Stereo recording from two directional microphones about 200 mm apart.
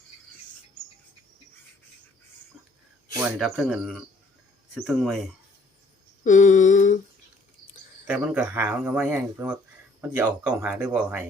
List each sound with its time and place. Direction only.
3.2 s speech: centre (ahead or behind)
6.2 s a sound: 40° left (ahead or behind)
8.0 s speech: 5° right (ahead or behind)